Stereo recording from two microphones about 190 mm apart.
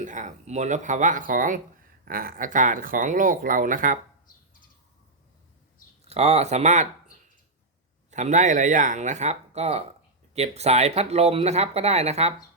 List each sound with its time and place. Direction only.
0.0 s speech: 40° right (ahead or behind)
6.1 s speech: 35° right (ahead or behind)
8.1 s speech: 40° right (ahead or behind)